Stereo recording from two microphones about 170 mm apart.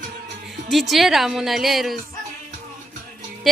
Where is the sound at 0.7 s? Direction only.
Centre (ahead or behind).